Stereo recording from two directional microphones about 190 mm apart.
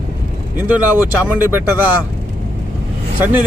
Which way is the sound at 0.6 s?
10° right (ahead or behind).